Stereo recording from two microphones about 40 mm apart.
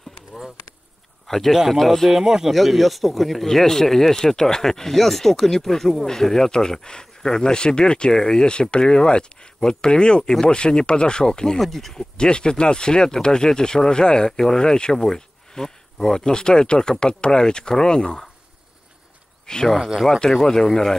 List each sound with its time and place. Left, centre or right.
1.2 s a sound: centre
1.5 s speech: centre
2.1 s speech: centre
2.5 s speech: centre
11.6 s speech: centre
11.9 s speech: centre
19.4 s speech: centre